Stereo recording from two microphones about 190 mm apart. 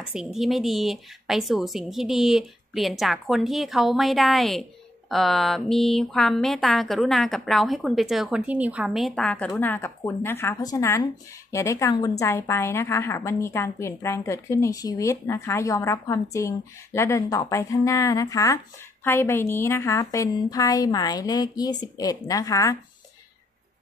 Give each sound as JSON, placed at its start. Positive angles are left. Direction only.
{"t": 0.1, "sound": "a woman's voice", "side_deg": -5}